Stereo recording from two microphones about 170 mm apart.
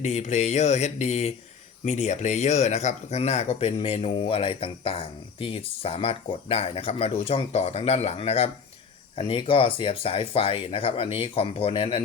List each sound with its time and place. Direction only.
0.0 s speech: 40° left (ahead or behind)